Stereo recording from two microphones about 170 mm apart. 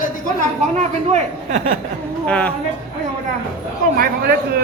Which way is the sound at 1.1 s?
45° right (ahead or behind).